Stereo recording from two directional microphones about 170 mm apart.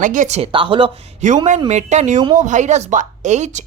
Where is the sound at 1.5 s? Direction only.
40° right (ahead or behind).